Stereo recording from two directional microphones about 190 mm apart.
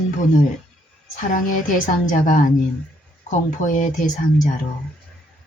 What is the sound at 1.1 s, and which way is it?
A woman's voice, 45° left (ahead or behind).